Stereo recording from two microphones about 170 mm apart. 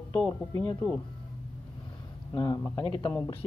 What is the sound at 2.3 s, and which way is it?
Speech, 20° left (ahead or behind).